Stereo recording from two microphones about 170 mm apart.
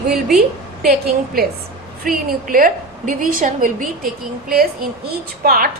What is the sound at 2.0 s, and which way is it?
A woman's voice, 55° right (ahead or behind).